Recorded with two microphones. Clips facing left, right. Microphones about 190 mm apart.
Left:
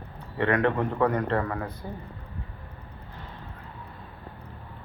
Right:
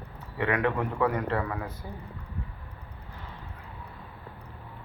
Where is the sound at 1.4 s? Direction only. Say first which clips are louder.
Left 2 dB; 45° left (ahead or behind).